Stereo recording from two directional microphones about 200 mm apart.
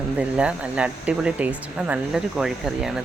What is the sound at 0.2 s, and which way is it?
Speech, 5° right (ahead or behind).